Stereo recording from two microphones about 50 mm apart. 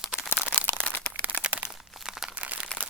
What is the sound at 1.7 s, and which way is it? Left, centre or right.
Crunch, centre.